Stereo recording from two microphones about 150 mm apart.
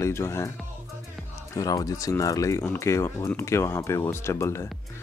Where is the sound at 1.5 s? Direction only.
25° left (ahead or behind).